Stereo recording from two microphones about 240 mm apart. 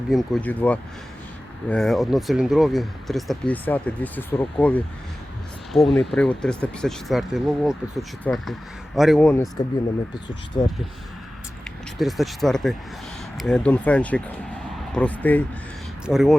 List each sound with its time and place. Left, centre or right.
0.1 s speech: centre
11.6 s speech: centre